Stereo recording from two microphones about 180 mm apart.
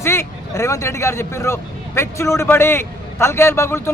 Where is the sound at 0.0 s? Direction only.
15° left (ahead or behind).